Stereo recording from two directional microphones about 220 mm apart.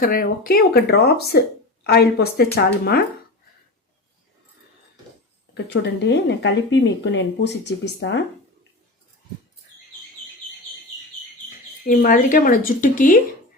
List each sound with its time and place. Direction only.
0.0 s speech: 40° left (ahead or behind)
5.6 s speech: 50° left (ahead or behind)
11.9 s speech: 40° left (ahead or behind)